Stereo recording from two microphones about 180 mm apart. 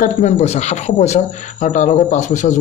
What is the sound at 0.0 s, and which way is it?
Speech, 40° left (ahead or behind).